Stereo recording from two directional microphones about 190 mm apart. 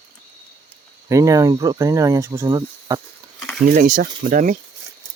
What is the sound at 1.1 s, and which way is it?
Speech, 15° right (ahead or behind).